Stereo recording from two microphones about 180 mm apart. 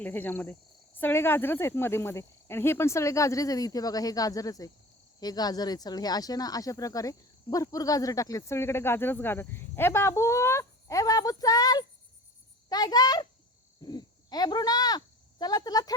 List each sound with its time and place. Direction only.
0.0 s a child's voice: 10° left (ahead or behind)